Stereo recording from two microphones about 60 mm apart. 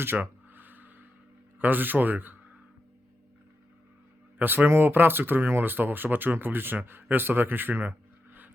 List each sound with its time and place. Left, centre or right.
0.0 s a sound: right
1.5 s speech: right
4.4 s speech: right